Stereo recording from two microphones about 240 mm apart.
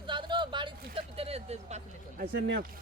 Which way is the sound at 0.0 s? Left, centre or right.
Centre.